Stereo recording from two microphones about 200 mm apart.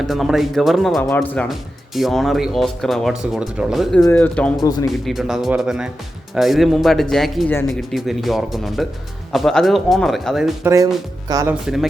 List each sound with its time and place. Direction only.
0.1 s speech: centre (ahead or behind)
10.6 s speech: 15° right (ahead or behind)
11.6 s speech: centre (ahead or behind)